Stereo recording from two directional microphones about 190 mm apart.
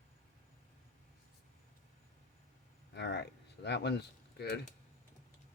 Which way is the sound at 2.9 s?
65° left (ahead or behind).